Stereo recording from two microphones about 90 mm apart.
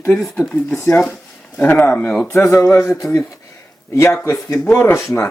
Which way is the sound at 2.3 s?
30° left (ahead or behind).